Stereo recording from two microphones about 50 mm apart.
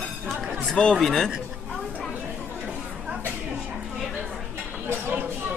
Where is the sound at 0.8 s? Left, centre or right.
Centre.